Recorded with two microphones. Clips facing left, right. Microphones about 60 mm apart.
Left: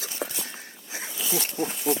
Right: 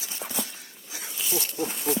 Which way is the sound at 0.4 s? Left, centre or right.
Left.